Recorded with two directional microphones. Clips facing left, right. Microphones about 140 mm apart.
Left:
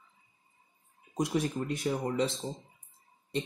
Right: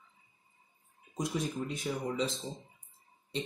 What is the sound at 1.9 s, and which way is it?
Speech, 50° left (ahead or behind).